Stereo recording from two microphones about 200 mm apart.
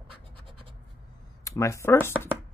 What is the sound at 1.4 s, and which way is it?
Speech, 15° left (ahead or behind).